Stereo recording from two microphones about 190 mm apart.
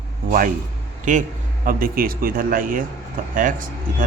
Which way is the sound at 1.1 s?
40° right (ahead or behind).